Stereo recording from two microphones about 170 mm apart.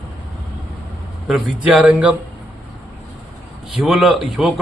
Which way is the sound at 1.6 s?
5° right (ahead or behind).